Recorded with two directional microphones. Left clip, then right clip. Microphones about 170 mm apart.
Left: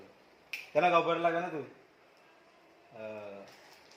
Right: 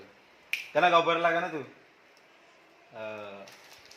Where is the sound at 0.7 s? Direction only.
20° right (ahead or behind).